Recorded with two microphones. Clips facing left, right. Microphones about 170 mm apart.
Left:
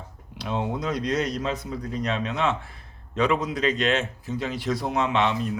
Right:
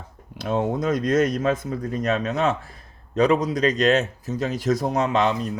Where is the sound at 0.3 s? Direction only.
45° right (ahead or behind).